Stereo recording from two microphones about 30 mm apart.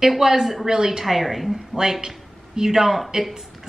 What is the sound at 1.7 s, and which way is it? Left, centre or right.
A woman's voice, centre.